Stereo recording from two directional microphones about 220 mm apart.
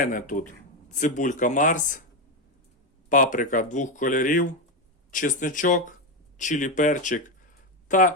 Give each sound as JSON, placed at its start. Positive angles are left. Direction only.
{"t": 0.0, "sound": "speech", "side_deg": 35}
{"t": 3.1, "sound": "speech", "side_deg": 35}